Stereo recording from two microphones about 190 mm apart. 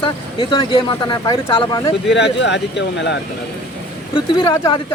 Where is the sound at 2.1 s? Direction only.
65° left (ahead or behind).